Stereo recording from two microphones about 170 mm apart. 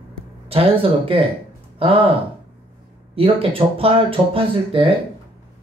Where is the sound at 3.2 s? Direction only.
35° right (ahead or behind).